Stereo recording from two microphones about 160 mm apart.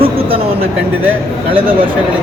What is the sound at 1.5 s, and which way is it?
Speech, 35° right (ahead or behind).